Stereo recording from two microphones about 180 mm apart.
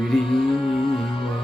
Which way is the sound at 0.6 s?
30° left (ahead or behind).